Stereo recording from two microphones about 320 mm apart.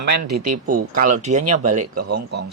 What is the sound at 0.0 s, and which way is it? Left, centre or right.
Speech, right.